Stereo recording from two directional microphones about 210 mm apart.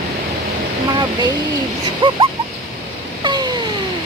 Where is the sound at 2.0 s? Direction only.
25° right (ahead or behind).